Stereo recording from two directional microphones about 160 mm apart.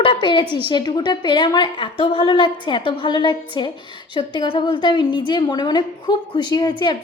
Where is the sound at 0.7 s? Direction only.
25° left (ahead or behind).